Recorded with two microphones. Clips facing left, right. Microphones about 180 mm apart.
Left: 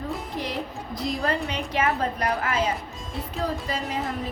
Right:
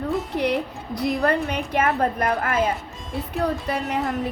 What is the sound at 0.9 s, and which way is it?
A woman's voice, 60° right (ahead or behind).